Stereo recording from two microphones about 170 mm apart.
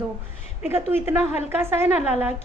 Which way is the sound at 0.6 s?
15° right (ahead or behind).